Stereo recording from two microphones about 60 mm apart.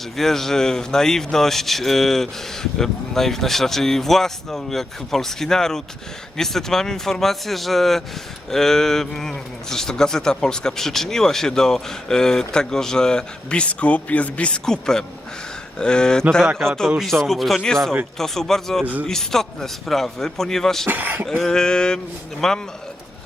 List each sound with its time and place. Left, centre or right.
0.2 s speech: centre
14.6 s speech: centre
20.8 s speech: right
21.2 s speech: centre